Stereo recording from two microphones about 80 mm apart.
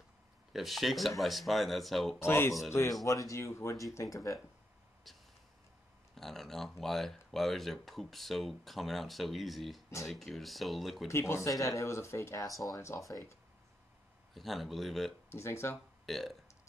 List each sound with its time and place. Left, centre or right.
0.5 s speech: centre
2.1 s speech: left
5.1 s a sound: centre
6.1 s speech: centre
11.1 s speech: left
14.3 s speech: centre
15.3 s speech: left
16.1 s speech: centre